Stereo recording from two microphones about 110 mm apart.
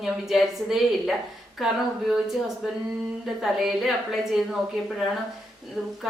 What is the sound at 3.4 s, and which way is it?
A woman's voice, centre (ahead or behind).